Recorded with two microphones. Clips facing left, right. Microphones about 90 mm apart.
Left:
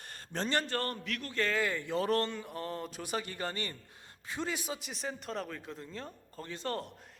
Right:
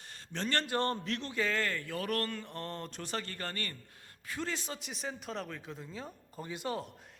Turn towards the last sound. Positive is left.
turn(degrees=0)  # may be behind; listen again after turning